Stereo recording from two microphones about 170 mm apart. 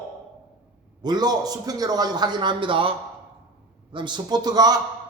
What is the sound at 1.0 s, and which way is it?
A man's voice, 25° right (ahead or behind).